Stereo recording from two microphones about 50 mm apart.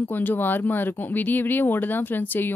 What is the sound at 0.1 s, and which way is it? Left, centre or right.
A woman's voice, left.